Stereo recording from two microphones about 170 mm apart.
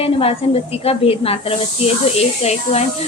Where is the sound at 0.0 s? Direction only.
35° left (ahead or behind).